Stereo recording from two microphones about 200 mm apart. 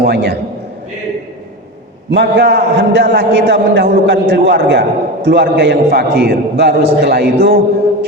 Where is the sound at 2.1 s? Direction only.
55° right (ahead or behind).